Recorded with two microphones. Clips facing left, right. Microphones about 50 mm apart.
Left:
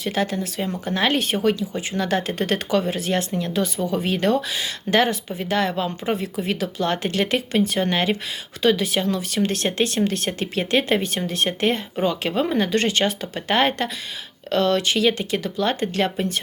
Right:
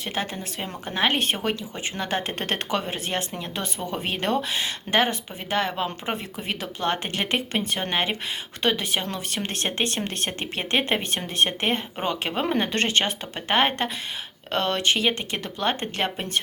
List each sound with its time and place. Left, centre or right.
0.0 s speech: right